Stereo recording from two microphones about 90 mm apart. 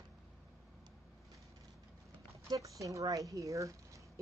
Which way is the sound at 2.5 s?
35° right (ahead or behind).